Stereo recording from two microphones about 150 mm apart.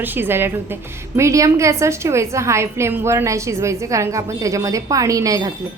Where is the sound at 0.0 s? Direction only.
15° right (ahead or behind).